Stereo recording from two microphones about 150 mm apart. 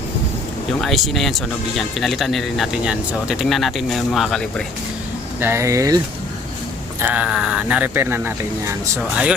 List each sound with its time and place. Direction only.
0.8 s speech: centre (ahead or behind)
5.4 s speech: 15° right (ahead or behind)
7.0 s speech: 10° right (ahead or behind)